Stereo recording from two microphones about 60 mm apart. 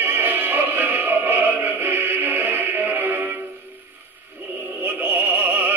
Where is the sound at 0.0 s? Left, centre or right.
Right.